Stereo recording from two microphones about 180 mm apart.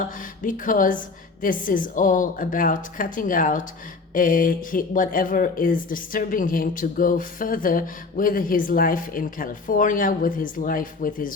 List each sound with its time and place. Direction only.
0.0 s speech: 50° left (ahead or behind)